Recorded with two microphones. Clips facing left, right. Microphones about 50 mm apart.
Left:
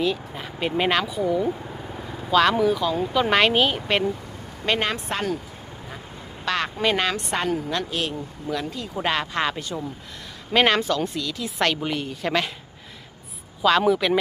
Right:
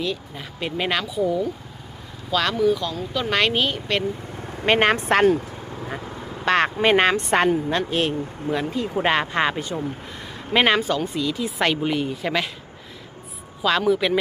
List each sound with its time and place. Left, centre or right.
0.0 s speech: centre
4.6 s a woman's voice: right
6.4 s a woman's voice: right
7.7 s speech: right
10.5 s speech: centre
13.6 s speech: centre